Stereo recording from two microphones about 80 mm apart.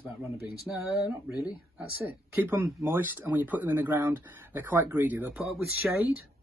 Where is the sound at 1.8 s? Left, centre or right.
Right.